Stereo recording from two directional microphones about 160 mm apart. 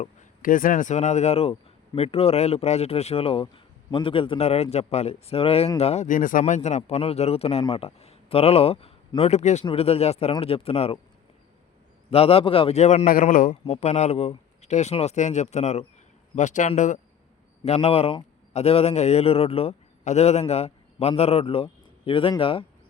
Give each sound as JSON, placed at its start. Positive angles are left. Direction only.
{"t": 0.0, "sound": "speech", "side_deg": 55}
{"t": 12.1, "sound": "speech", "side_deg": 35}
{"t": 13.7, "sound": "speech", "side_deg": 45}
{"t": 17.7, "sound": "a man's voice", "side_deg": 40}